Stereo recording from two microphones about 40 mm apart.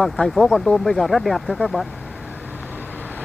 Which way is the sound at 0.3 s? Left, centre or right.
Centre.